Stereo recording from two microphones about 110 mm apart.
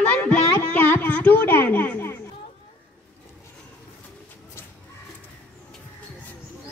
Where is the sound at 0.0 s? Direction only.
10° left (ahead or behind).